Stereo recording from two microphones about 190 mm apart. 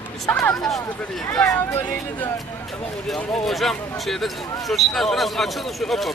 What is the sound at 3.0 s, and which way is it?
Speech, centre (ahead or behind).